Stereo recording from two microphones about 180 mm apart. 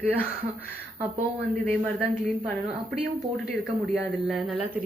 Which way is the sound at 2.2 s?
Centre (ahead or behind).